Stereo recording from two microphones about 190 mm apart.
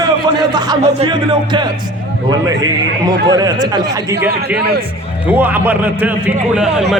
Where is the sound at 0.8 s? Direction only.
25° right (ahead or behind).